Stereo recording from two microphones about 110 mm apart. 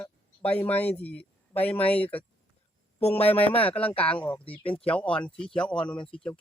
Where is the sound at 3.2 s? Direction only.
65° left (ahead or behind).